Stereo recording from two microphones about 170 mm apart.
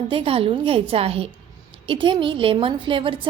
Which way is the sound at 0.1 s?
35° right (ahead or behind).